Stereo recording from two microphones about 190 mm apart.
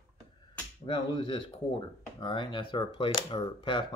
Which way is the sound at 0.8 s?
25° left (ahead or behind).